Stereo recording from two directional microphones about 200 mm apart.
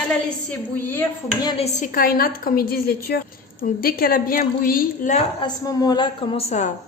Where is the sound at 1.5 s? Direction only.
30° left (ahead or behind).